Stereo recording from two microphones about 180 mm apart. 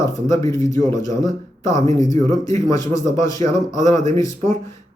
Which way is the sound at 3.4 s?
40° right (ahead or behind).